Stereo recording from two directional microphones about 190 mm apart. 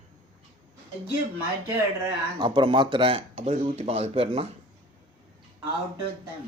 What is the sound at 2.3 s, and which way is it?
Speech, 25° right (ahead or behind).